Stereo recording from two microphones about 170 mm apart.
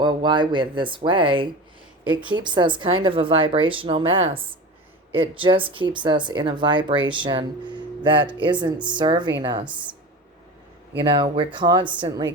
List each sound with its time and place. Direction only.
0.0 s speech: 25° right (ahead or behind)
11.0 s speech: 25° right (ahead or behind)